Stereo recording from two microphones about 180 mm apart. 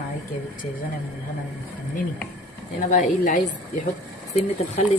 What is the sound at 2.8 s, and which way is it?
Speech, 45° left (ahead or behind).